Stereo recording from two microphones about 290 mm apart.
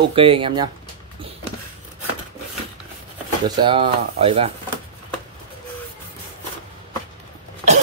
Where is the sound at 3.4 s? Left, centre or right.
Centre.